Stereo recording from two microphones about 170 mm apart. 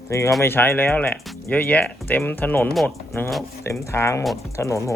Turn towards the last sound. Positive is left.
turn(degrees=15)  # may be behind; listen again after turning